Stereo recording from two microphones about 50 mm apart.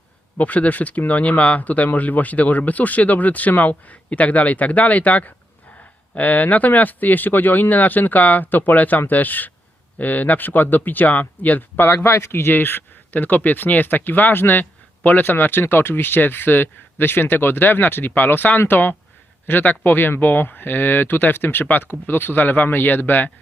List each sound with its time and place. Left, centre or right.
0.3 s speech: left
11.9 s speech: left